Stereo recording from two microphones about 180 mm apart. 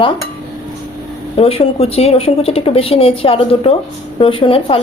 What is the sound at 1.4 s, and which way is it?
Speech, 35° left (ahead or behind).